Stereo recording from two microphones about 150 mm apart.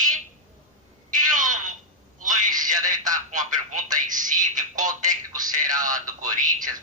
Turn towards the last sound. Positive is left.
turn(degrees=-60)  # may be behind; listen again after turning